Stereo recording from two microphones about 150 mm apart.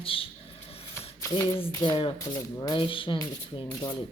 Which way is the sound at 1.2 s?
20° left (ahead or behind).